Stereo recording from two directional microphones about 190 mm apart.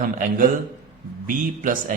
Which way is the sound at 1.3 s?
45° right (ahead or behind).